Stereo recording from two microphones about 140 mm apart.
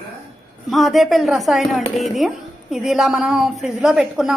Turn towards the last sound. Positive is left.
turn(degrees=-5)  # may be behind; listen again after turning